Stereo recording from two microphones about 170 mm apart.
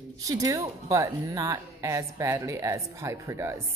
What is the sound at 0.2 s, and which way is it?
A woman's voice, 20° right (ahead or behind).